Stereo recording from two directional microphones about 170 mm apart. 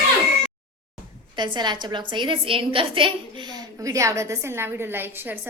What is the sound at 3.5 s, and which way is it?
A woman's voice, 20° right (ahead or behind).